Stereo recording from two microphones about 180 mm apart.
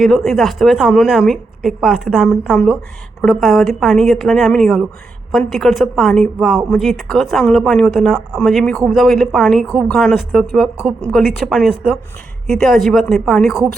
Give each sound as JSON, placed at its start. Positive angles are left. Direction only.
{"t": 0.0, "sound": "a woman's voice", "side_deg": 0}